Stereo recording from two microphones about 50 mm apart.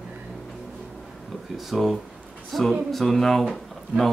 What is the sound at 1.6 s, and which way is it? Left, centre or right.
Speech, centre.